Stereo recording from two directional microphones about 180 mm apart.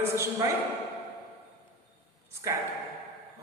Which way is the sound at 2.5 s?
15° right (ahead or behind).